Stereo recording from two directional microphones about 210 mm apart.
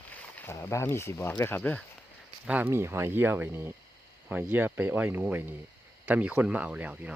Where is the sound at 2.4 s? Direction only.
10° right (ahead or behind).